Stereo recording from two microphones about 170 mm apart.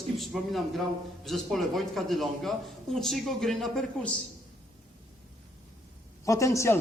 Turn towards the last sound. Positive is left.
turn(degrees=15)  # may be behind; listen again after turning